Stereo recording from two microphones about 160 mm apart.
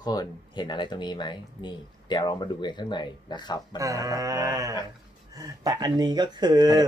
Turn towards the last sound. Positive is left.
turn(degrees=-25)  # may be behind; listen again after turning